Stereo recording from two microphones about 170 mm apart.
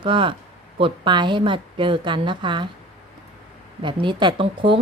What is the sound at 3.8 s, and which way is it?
A woman's voice, 30° right (ahead or behind).